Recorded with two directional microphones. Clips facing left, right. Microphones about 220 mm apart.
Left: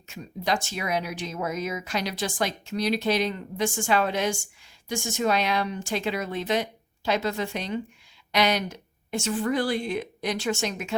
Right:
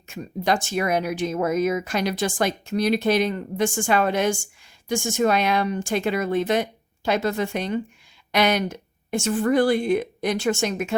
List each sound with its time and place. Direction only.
0.1 s speech: 50° right (ahead or behind)